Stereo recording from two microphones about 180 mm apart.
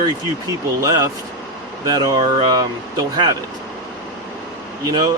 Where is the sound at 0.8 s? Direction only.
20° right (ahead or behind).